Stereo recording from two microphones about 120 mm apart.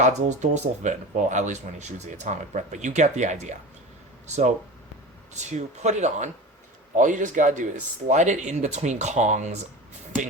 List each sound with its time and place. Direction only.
0.0 s speech: 90° right
6.9 s speech: 90° right